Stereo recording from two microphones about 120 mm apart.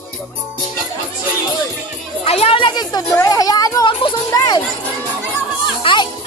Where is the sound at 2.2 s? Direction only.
55° left (ahead or behind); by 3.8 s 30° left (ahead or behind).